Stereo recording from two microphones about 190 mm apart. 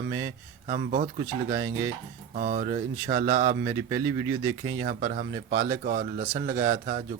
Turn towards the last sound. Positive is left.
turn(degrees=-45)  # may be behind; listen again after turning